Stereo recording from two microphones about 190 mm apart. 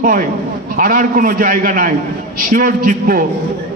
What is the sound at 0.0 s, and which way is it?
A man's voice, 45° right (ahead or behind).